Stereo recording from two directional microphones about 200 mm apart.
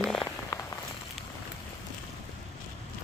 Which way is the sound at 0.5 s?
15° left (ahead or behind).